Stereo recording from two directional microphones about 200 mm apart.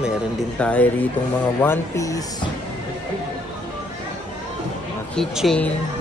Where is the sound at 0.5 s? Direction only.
5° left (ahead or behind).